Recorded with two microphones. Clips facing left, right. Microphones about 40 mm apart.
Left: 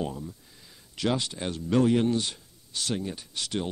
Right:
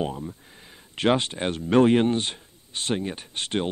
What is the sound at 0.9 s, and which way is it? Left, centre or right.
Speech, right.